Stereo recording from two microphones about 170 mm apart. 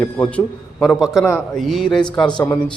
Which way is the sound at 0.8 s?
5° right (ahead or behind).